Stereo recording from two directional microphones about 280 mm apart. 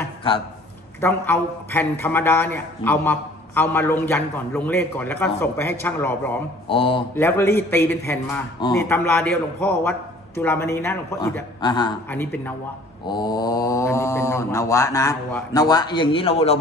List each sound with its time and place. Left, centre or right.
0.0 s a sound: centre
1.0 s a man's voice: centre
6.7 s speech: centre
7.2 s a man's voice: centre